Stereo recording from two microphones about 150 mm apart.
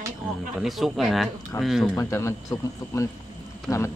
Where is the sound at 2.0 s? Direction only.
20° left (ahead or behind).